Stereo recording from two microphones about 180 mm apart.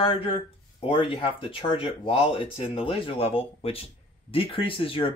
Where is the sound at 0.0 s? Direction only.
30° left (ahead or behind).